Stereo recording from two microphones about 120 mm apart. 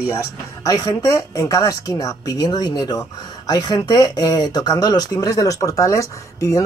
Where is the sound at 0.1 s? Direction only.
25° left (ahead or behind).